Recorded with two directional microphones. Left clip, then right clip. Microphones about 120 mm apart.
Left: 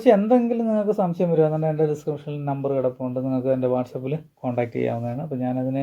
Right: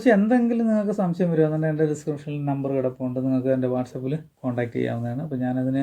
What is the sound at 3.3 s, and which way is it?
Speech, 25° left (ahead or behind).